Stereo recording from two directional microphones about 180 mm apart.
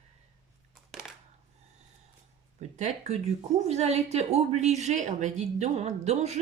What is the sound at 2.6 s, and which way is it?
A woman's voice, 40° right (ahead or behind).